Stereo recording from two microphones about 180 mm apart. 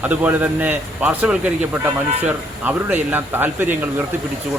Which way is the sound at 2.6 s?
10° right (ahead or behind).